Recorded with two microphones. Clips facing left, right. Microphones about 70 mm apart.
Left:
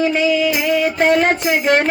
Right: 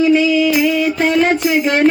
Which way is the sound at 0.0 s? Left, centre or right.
Left.